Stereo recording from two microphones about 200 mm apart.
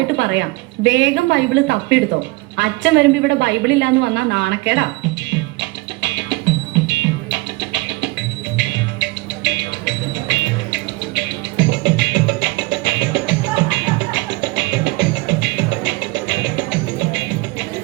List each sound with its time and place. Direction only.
0.2 s a woman's voice: 60° right (ahead or behind)
5.3 s music: 65° right (ahead or behind)